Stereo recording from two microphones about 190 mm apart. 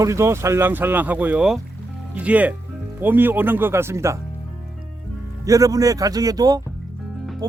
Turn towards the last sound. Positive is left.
turn(degrees=-20)  # may be behind; listen again after turning